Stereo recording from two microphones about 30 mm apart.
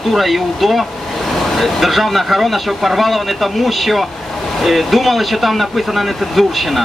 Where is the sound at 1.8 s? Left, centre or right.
Centre.